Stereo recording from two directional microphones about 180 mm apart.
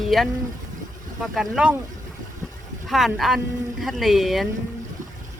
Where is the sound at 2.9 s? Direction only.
Centre (ahead or behind).